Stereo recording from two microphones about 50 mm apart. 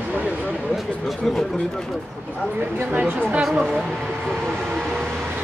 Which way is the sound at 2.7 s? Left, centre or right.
Right.